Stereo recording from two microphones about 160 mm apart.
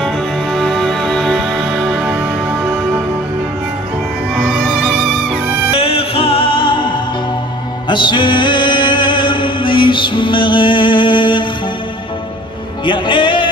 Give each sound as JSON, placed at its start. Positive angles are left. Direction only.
{"t": 0.0, "sound": "music", "side_deg": 0}
{"t": 4.4, "sound": "music", "side_deg": -5}
{"t": 5.8, "sound": "music", "side_deg": 35}
{"t": 7.9, "sound": "music", "side_deg": 30}
{"t": 12.8, "sound": "music", "side_deg": 30}